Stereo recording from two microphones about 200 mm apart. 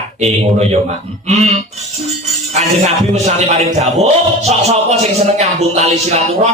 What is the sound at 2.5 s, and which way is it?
Music, 30° right (ahead or behind).